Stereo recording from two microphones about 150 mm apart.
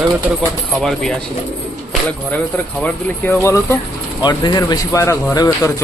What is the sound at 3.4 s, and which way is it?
Speech, 20° left (ahead or behind).